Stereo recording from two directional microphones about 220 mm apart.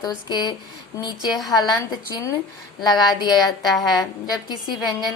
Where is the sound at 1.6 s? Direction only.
15° left (ahead or behind).